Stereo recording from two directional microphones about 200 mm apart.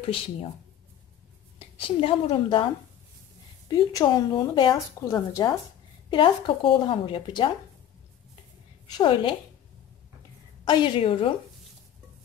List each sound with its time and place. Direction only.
1.8 s speech: 25° left (ahead or behind)
8.8 s speech: 20° left (ahead or behind)
10.6 s speech: 20° left (ahead or behind)